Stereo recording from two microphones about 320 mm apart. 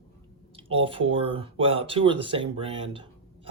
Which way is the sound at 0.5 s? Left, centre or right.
Centre.